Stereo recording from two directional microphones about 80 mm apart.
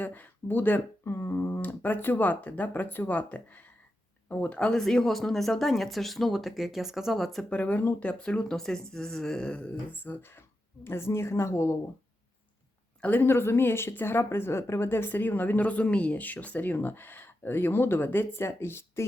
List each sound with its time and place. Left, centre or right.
0.0 s speech: left; by 7.4 s centre
7.5 s speech: centre; by 11.8 s left
13.0 s speech: left